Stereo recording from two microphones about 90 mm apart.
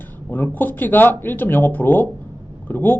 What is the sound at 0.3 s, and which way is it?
Speech, 20° left (ahead or behind).